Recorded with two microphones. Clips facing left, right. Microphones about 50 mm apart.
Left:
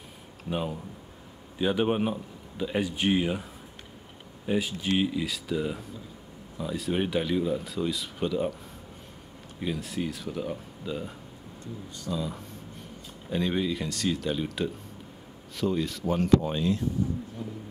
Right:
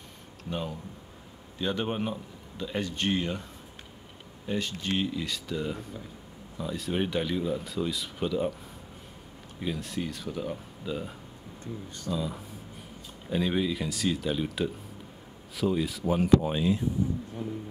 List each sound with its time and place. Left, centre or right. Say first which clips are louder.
0.5 s speech: left 3 dB; centre
4.5 s speech: left 3 dB; centre
9.6 s speech: left 1 dB; centre
17.4 s a sound: right 3 dB; right